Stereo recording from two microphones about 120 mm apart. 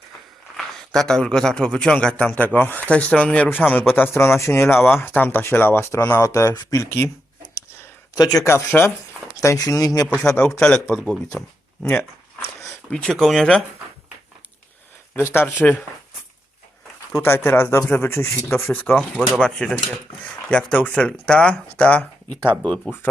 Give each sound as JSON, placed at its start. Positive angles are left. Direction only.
{"t": 0.5, "sound": "a man's voice", "side_deg": 0}
{"t": 8.1, "sound": "speech", "side_deg": 30}
{"t": 10.3, "sound": "a man's voice", "side_deg": 5}
{"t": 11.8, "sound": "a sound", "side_deg": 15}
{"t": 12.9, "sound": "speech", "side_deg": 5}
{"t": 15.1, "sound": "speech", "side_deg": 20}
{"t": 17.1, "sound": "speech", "side_deg": 25}
{"t": 19.4, "sound": "a man's voice", "side_deg": 5}